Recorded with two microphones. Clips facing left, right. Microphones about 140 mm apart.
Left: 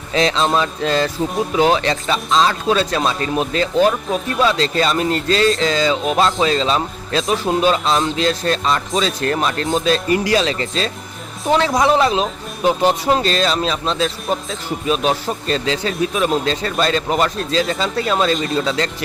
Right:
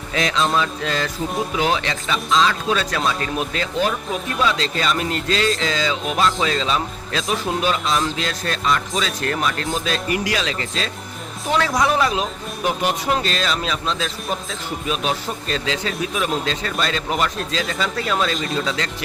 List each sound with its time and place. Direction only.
0.1 s speech: 30° left (ahead or behind)